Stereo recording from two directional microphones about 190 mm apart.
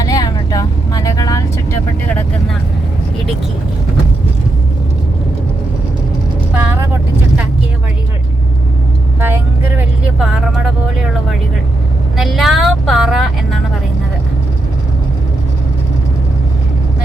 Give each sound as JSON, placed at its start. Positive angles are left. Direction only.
{"t": 0.0, "sound": "vehicle", "side_deg": 20}
{"t": 6.5, "sound": "vehicle", "side_deg": -10}
{"t": 9.2, "sound": "vehicle", "side_deg": -10}